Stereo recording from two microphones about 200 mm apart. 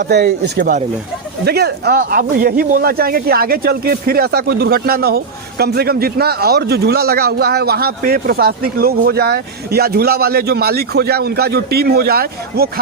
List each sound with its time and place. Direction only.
0.1 s speech: 55° right (ahead or behind)